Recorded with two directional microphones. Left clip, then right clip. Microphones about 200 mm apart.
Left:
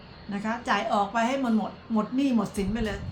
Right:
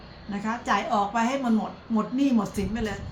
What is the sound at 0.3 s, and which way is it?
A woman's voice, 15° left (ahead or behind).